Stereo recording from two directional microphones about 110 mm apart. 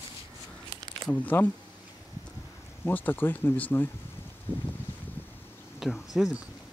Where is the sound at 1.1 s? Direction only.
15° left (ahead or behind).